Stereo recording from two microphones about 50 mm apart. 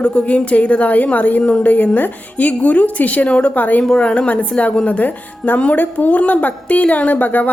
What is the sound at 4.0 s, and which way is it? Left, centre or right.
A woman's voice, left.